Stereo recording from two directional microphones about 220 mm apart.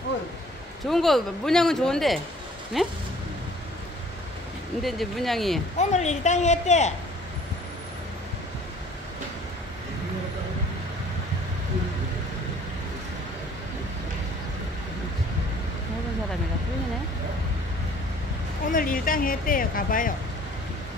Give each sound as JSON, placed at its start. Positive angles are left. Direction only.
{"t": 0.8, "sound": "speech", "side_deg": 0}
{"t": 4.8, "sound": "speech", "side_deg": 0}
{"t": 5.8, "sound": "a woman's voice", "side_deg": 30}
{"t": 18.7, "sound": "speech", "side_deg": 40}